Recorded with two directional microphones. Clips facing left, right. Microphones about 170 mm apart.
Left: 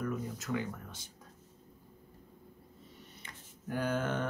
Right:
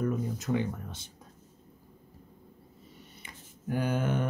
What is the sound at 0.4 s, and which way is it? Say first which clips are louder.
Speech: right 6 dB; 25° right (ahead or behind).